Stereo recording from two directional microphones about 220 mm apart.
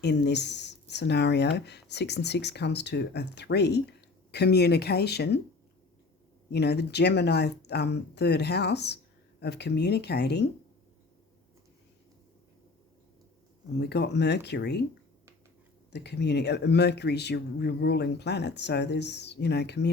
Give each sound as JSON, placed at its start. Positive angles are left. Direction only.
{"t": 0.0, "sound": "speech", "side_deg": 50}
{"t": 6.5, "sound": "speech", "side_deg": 50}
{"t": 13.7, "sound": "speech", "side_deg": 50}
{"t": 15.9, "sound": "speech", "side_deg": 50}